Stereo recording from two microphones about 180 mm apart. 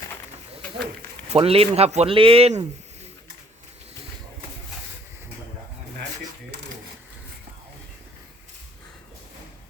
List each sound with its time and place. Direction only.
1.3 s speech: 35° right (ahead or behind)